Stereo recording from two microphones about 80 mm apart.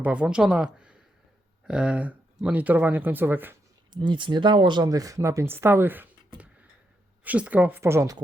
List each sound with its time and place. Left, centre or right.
0.0 s speech: centre
3.9 s speech: right
4.9 s speech: right
7.8 s speech: right